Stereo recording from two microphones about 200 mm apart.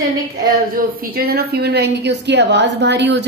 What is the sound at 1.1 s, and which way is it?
A woman's voice, 50° right (ahead or behind).